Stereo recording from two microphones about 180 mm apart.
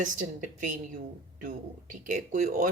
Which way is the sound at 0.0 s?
45° right (ahead or behind).